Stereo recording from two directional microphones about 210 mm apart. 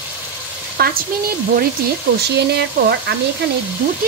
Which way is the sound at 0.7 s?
45° right (ahead or behind).